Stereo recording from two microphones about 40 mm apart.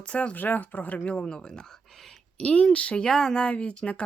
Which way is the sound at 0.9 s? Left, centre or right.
Left.